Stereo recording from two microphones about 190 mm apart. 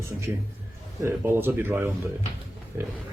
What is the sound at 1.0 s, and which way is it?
Speech, 15° right (ahead or behind).